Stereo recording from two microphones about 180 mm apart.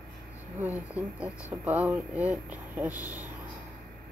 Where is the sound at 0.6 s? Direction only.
10° right (ahead or behind).